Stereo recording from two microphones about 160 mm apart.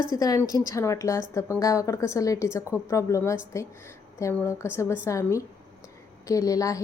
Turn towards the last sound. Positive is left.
turn(degrees=20)  # may be behind; listen again after turning